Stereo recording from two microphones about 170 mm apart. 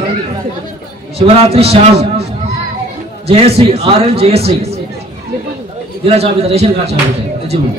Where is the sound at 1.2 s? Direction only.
35° right (ahead or behind).